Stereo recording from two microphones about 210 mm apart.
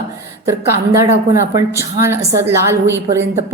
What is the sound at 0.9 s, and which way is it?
A woman's voice, 15° right (ahead or behind).